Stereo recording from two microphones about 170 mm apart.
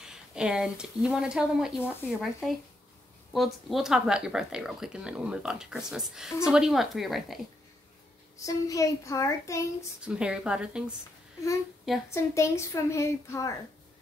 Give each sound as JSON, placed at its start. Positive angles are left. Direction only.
{"t": 0.0, "sound": "speech", "side_deg": -5}
{"t": 8.5, "sound": "a child's voice", "side_deg": 20}
{"t": 10.0, "sound": "speech", "side_deg": -5}
{"t": 12.1, "sound": "a woman's voice", "side_deg": 15}